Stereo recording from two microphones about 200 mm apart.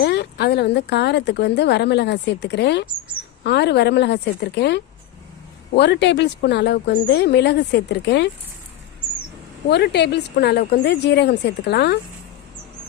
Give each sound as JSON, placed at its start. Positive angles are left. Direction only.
{"t": 0.0, "sound": "a woman's voice", "side_deg": 55}
{"t": 9.6, "sound": "a woman's voice", "side_deg": 55}